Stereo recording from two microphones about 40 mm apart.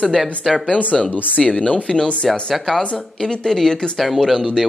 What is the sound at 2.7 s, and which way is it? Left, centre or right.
Speech, centre.